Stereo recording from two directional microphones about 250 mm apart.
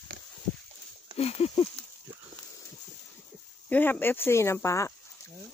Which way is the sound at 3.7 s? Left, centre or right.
Centre.